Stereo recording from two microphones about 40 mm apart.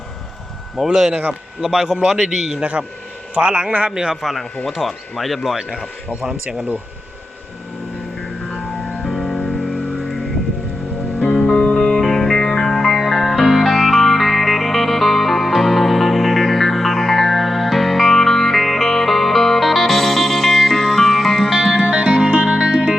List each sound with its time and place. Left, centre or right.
0.8 s speech: centre
1.7 s a man's voice: centre
2.8 s a man's voice: right
4.1 s speech: centre
8.4 s music: centre
11.3 s music: left
21.5 s music: centre
21.8 s music: right